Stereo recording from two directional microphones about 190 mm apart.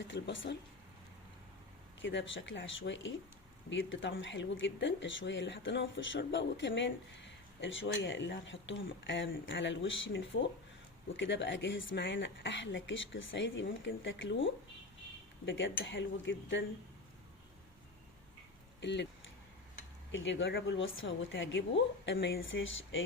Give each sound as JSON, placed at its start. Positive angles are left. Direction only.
{"t": 0.1, "sound": "speech", "side_deg": 65}
{"t": 2.0, "sound": "speech", "side_deg": 75}
{"t": 11.1, "sound": "speech", "side_deg": 70}
{"t": 18.8, "sound": "speech", "side_deg": 65}
{"t": 20.1, "sound": "speech", "side_deg": 75}